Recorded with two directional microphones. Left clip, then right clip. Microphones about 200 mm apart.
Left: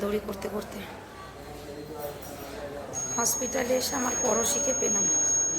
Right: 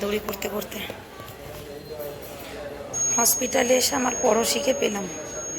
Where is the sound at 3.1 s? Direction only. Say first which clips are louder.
Right 6 dB; 20° right (ahead or behind).